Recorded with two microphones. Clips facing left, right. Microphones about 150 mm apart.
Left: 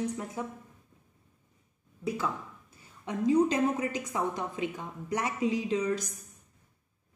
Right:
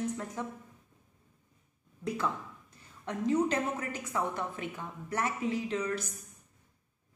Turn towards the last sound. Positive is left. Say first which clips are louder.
# left 3 dB
turn(degrees=15)  # may be behind; listen again after turning